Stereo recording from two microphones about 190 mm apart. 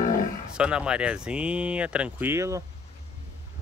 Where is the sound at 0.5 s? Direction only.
5° right (ahead or behind).